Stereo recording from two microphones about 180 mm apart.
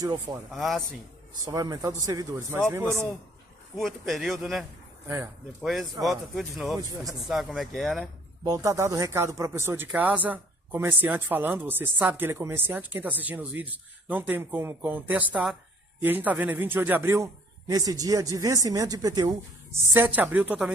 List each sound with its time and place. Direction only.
0.0 s a man's voice: 20° right (ahead or behind)
0.5 s speech: centre (ahead or behind)
1.4 s a man's voice: 20° right (ahead or behind)
3.7 s speech: centre (ahead or behind)
5.0 s speech: 20° right (ahead or behind)
5.6 s speech: centre (ahead or behind)
8.5 s speech: 20° right (ahead or behind)